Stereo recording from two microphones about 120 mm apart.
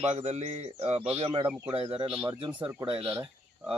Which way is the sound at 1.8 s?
50° right (ahead or behind).